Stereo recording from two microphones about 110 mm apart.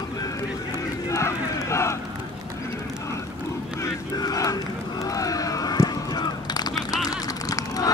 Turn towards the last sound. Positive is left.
turn(degrees=35)  # may be behind; listen again after turning